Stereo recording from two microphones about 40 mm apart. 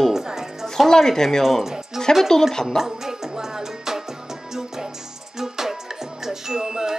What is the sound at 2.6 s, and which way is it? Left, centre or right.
Music, centre.